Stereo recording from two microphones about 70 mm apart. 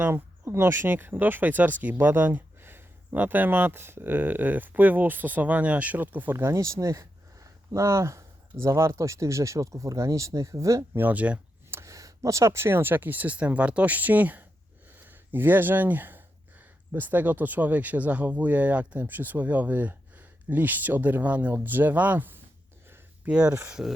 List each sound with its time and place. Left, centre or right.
0.1 s speech: right
10.9 s speech: right
11.7 s speech: right
23.3 s speech: centre